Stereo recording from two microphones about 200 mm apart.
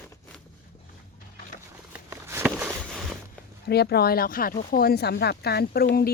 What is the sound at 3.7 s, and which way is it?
Speech, 55° left (ahead or behind).